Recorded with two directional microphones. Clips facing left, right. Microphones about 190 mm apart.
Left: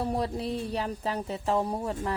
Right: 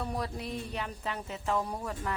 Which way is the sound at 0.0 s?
30° left (ahead or behind).